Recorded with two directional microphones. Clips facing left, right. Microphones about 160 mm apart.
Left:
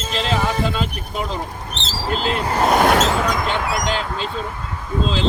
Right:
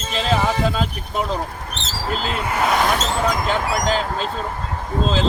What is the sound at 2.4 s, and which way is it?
Speech, 35° left (ahead or behind).